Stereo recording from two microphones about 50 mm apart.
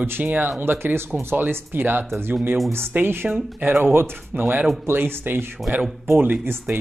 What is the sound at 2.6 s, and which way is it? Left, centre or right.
Speech, right.